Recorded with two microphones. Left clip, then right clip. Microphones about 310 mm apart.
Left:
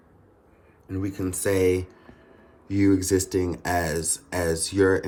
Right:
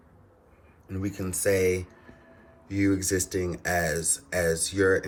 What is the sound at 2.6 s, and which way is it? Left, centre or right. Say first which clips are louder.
Speech: left 4 dB; centre.